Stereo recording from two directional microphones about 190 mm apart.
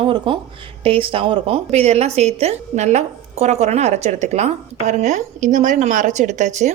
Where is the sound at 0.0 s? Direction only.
25° right (ahead or behind).